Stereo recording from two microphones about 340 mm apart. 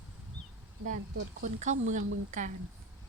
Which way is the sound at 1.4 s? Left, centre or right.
Right.